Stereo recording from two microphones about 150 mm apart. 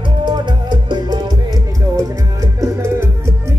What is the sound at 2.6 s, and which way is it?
Music, 20° right (ahead or behind).